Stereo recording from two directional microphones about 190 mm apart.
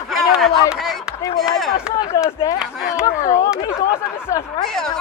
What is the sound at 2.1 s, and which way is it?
Speech, 15° left (ahead or behind).